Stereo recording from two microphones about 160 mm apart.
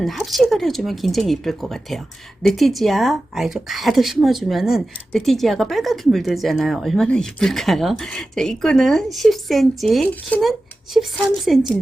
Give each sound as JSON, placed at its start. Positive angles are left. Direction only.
{"t": 0.0, "sound": "speech", "side_deg": 0}